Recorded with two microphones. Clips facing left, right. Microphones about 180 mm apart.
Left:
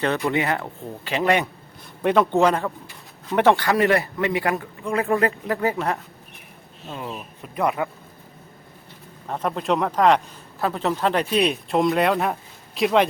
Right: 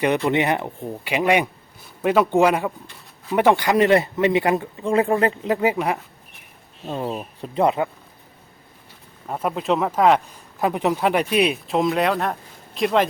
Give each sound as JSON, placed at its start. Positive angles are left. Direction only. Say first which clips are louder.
{"t": 0.3, "sound": "a man's voice", "louder": "right 3 dB", "side_deg": -20}
{"t": 6.8, "sound": "speech", "louder": "right 6 dB", "side_deg": -35}
{"t": 9.2, "sound": "a man's voice", "louder": "right 1 dB", "side_deg": -5}